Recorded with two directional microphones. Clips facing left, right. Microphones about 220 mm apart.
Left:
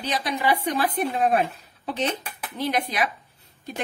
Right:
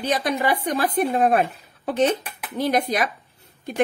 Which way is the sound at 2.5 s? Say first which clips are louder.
Right 4 dB; 45° right (ahead or behind).